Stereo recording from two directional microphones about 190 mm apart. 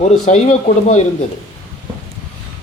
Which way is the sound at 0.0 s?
40° left (ahead or behind).